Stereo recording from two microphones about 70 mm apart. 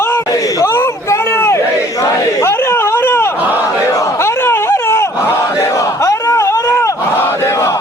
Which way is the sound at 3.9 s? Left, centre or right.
Left.